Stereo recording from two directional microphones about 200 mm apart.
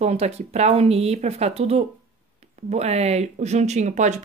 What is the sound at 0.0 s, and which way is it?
Speech, 35° right (ahead or behind).